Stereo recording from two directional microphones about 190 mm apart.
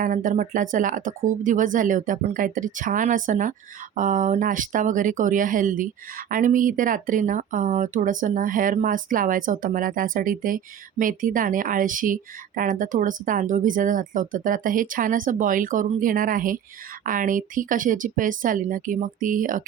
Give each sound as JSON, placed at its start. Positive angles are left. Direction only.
{"t": 0.0, "sound": "speech", "side_deg": -45}